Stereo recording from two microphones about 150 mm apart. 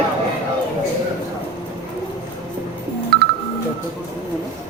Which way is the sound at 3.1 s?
90° right.